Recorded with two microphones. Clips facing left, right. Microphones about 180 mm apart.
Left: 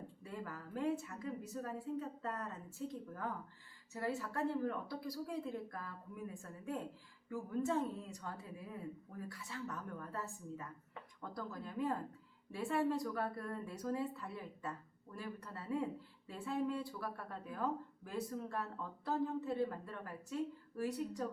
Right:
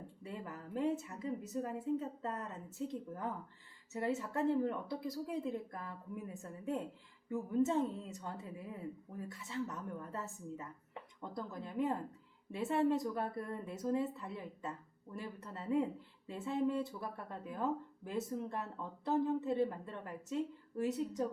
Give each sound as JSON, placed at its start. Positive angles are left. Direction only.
{"t": 0.2, "sound": "a woman's voice", "side_deg": -20}